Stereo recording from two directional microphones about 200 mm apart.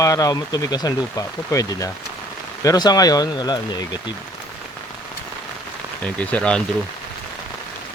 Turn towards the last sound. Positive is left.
turn(degrees=5)  # may be behind; listen again after turning